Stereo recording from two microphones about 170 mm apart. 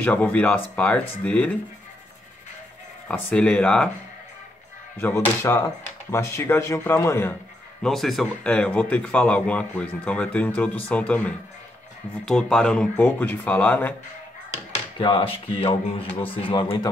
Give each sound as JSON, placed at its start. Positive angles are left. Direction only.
{"t": 0.0, "sound": "speech", "side_deg": 10}
{"t": 3.1, "sound": "speech", "side_deg": 5}
{"t": 4.9, "sound": "speech", "side_deg": 10}
{"t": 7.8, "sound": "speech", "side_deg": 0}
{"t": 15.0, "sound": "speech", "side_deg": 30}